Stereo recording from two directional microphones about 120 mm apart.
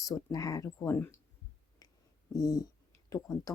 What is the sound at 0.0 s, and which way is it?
Speech, 30° left (ahead or behind).